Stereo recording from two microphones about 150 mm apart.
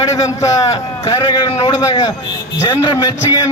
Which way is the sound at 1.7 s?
25° left (ahead or behind).